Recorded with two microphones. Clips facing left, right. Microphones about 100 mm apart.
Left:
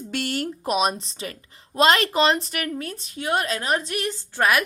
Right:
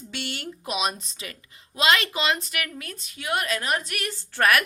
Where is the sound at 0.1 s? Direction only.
45° left (ahead or behind).